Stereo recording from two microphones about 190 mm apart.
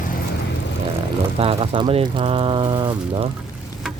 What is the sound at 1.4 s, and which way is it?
Speech, 30° right (ahead or behind).